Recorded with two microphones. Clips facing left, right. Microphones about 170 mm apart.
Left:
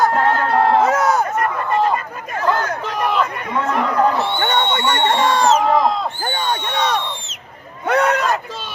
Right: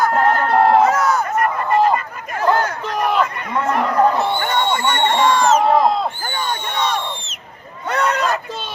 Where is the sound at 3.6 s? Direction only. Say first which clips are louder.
Right 2 dB; centre (ahead or behind).